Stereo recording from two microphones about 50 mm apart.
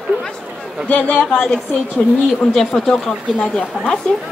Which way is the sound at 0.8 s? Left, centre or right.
Left.